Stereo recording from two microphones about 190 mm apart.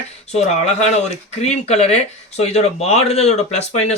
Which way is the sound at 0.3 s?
35° left (ahead or behind).